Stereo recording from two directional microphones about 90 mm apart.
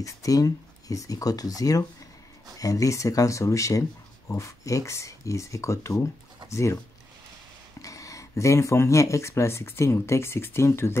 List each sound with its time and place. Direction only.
0.0 s speech: 40° left (ahead or behind)
7.8 s speech: 35° left (ahead or behind)